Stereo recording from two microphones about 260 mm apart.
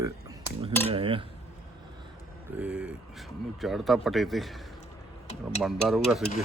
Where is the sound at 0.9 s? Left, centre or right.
Right.